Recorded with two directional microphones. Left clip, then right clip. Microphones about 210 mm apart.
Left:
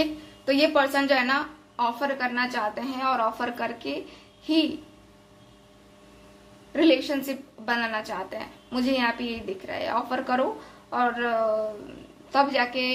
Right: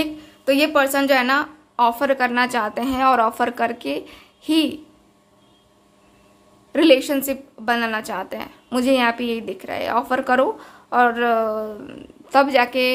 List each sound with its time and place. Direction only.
0.0 s a woman's voice: 30° right (ahead or behind)
6.7 s a woman's voice: 35° right (ahead or behind)